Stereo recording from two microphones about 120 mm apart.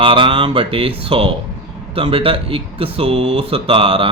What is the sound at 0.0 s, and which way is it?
Speech, 45° right (ahead or behind).